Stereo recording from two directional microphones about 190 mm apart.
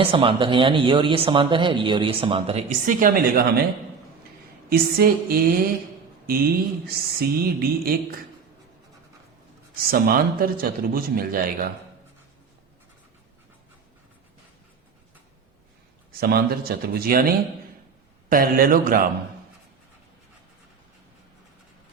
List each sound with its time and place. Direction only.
0.0 s speech: 25° right (ahead or behind)
2.6 s speech: 45° right (ahead or behind)
4.7 s speech: 55° right (ahead or behind)
9.9 s speech: 50° right (ahead or behind)
16.2 s speech: 55° right (ahead or behind)